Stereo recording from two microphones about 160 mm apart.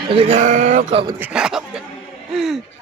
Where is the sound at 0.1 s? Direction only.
35° right (ahead or behind).